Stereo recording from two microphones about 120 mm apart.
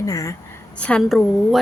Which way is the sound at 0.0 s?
30° left (ahead or behind).